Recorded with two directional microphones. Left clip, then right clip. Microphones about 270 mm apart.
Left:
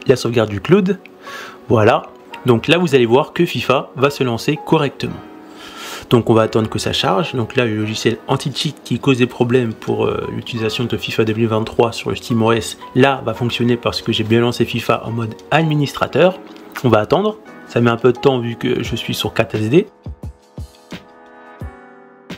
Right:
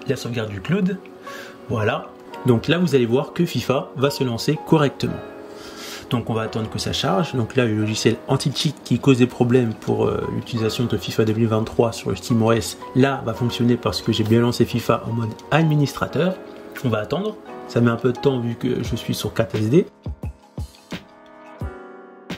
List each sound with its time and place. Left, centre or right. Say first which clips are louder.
0.0 s speech: left 11 dB; centre
5.8 s a sound: left 8 dB; centre
6.3 s speech: left 11 dB; centre